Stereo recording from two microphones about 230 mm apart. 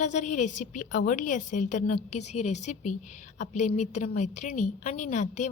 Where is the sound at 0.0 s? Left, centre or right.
Left.